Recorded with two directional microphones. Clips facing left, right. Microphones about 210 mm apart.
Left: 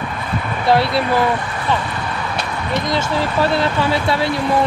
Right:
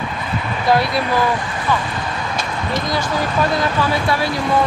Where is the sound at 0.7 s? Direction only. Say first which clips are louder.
Left 1 dB; 25° left (ahead or behind).